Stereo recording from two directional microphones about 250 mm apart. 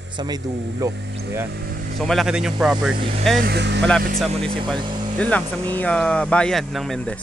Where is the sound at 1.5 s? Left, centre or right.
Right.